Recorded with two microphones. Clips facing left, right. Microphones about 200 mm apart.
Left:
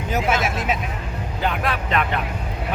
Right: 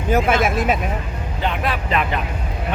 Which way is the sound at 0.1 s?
55° right (ahead or behind).